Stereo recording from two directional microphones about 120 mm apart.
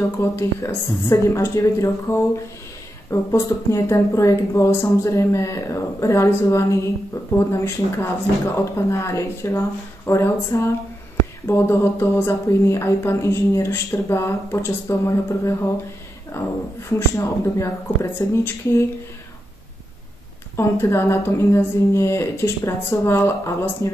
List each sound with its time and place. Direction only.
0.2 s speech: 25° left (ahead or behind)
20.5 s speech: 20° left (ahead or behind)